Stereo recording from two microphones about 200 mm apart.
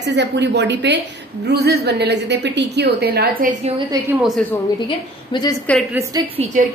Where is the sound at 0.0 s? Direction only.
60° right (ahead or behind).